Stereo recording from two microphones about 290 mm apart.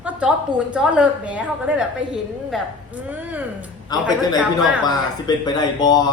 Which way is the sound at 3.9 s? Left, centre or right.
Centre.